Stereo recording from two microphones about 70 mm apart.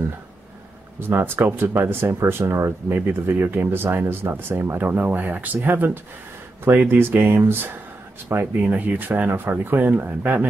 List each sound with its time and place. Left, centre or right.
0.9 s speech: right